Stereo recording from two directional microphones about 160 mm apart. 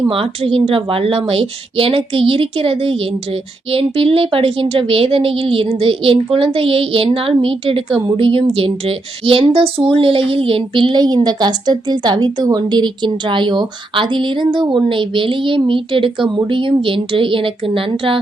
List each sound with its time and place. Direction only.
0.1 s a woman's voice: 35° right (ahead or behind)